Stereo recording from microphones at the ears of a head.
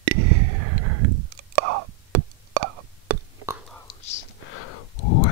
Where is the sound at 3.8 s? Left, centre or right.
Left.